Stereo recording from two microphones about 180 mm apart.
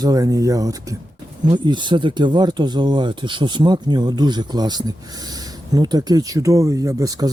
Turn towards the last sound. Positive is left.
turn(degrees=-20)  # may be behind; listen again after turning